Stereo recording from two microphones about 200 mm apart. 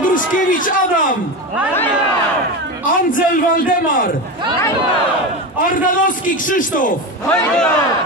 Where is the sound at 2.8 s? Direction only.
45° left (ahead or behind).